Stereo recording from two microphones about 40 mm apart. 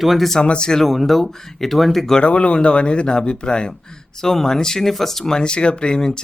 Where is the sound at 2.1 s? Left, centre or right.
Left.